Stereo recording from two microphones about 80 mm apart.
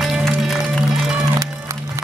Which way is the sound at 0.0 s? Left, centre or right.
Centre.